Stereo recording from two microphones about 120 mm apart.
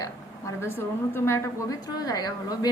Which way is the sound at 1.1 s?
20° left (ahead or behind).